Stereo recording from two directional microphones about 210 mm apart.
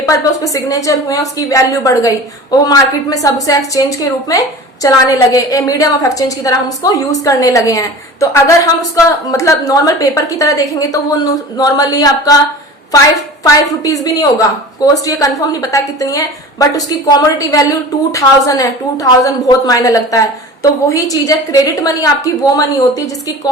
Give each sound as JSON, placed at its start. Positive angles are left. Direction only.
{"t": 0.0, "sound": "a woman's voice", "side_deg": 15}
{"t": 13.4, "sound": "a woman's voice", "side_deg": 15}